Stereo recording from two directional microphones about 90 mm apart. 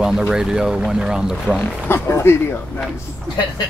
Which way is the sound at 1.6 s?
25° left (ahead or behind).